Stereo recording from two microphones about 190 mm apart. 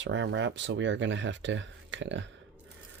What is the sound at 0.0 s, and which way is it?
Speech, 70° right (ahead or behind).